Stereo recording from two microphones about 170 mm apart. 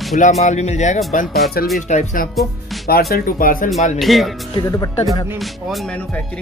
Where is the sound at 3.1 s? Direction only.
60° left (ahead or behind).